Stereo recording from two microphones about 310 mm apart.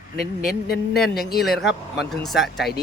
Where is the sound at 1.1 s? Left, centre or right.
Left.